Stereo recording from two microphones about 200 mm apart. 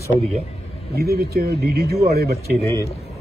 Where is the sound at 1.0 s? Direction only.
50° right (ahead or behind).